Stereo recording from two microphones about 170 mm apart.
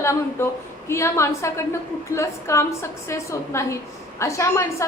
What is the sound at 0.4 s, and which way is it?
A woman's voice, 15° left (ahead or behind).